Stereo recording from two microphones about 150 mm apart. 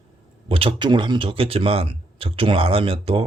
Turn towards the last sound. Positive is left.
turn(degrees=-40)  # may be behind; listen again after turning